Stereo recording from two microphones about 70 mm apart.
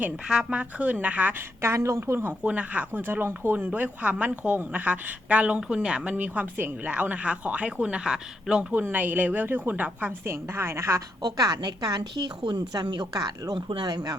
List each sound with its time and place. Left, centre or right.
0.5 s speech: centre
1.7 s speech: right; by 8.6 s centre
8.7 s speech: right
10.3 s a woman's voice: right
11.2 s a woman's voice: right